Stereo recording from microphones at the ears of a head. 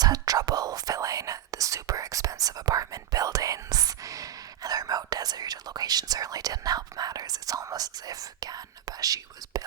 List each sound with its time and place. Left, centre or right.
0.0 s whispering: right